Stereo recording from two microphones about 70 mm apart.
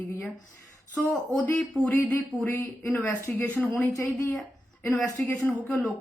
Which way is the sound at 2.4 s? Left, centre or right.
Left.